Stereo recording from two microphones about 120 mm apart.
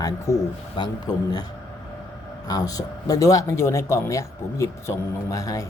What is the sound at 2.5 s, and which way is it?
Speech, 30° left (ahead or behind).